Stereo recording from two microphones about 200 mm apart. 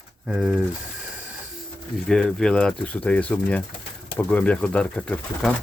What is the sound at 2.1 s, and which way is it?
Speech, 5° left (ahead or behind).